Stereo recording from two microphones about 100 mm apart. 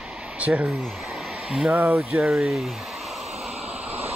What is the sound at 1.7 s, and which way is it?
Speech, 20° right (ahead or behind).